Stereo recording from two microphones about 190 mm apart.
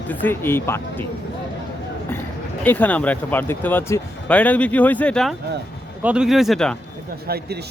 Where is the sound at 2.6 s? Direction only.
10° left (ahead or behind).